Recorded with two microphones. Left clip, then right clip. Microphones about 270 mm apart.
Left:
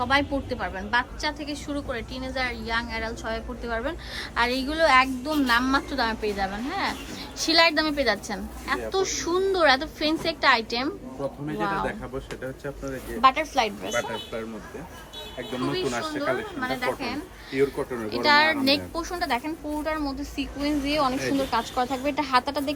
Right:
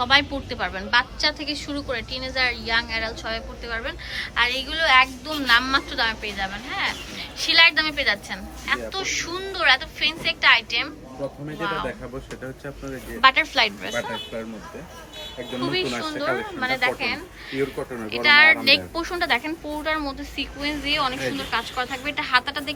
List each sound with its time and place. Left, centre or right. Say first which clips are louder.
0.0 s a woman's voice: right 4 dB; centre
12.6 s speech: left 1 dB; centre
13.2 s a woman's voice: right 3 dB; centre
13.9 s speech: even; centre
15.6 s a woman's voice: right 3 dB; centre
18.1 s a woman's voice: right 5 dB; centre